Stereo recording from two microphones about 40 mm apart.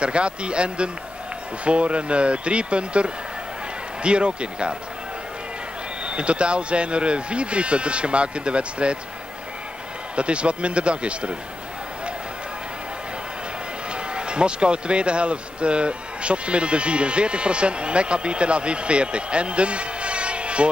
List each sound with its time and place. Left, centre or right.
0.0 s speech: right
6.0 s speech: right
10.1 s speech: right
14.1 s speech: right